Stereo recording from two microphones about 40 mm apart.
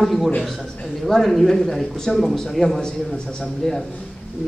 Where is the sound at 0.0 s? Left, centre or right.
Centre.